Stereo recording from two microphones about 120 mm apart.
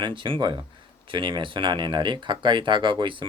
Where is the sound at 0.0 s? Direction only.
45° right (ahead or behind).